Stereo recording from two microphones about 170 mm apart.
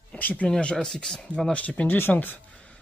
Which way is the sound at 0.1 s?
10° left (ahead or behind).